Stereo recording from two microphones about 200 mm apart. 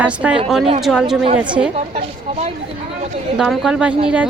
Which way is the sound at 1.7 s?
35° right (ahead or behind).